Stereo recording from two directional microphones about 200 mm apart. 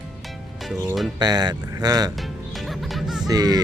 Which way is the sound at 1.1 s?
20° right (ahead or behind).